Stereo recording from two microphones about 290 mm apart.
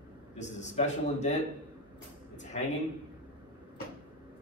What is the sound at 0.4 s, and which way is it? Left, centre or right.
Speech, left.